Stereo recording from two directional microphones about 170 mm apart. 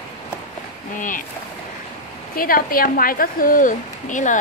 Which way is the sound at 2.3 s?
60° left (ahead or behind).